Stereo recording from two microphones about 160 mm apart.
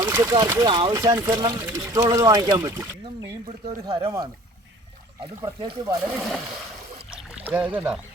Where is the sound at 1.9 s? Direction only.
20° right (ahead or behind).